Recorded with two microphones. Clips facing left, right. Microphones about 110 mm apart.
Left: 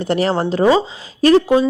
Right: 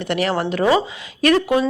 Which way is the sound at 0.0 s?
35° left (ahead or behind).